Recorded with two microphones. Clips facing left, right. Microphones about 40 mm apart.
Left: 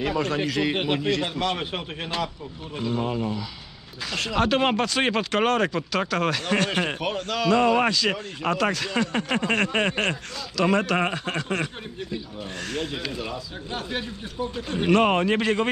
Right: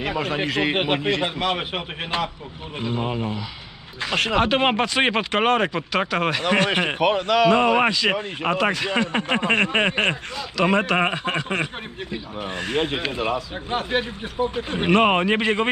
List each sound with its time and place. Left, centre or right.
0.0 s speech: right
4.4 s speech: right
12.8 s a man's voice: right